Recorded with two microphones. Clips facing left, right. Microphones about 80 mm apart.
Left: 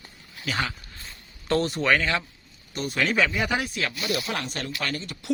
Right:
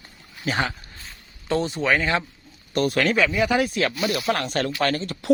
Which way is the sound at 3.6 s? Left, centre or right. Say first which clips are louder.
Right 6 dB; right.